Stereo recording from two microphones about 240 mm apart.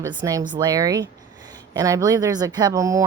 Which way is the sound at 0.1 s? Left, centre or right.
Centre.